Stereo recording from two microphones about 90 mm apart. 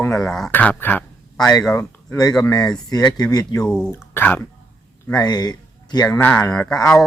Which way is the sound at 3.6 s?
10° left (ahead or behind).